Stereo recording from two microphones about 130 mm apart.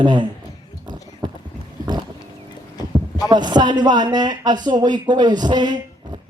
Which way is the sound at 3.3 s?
35° right (ahead or behind).